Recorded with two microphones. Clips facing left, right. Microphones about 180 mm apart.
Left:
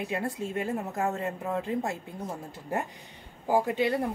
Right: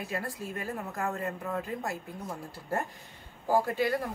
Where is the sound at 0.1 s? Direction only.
25° left (ahead or behind).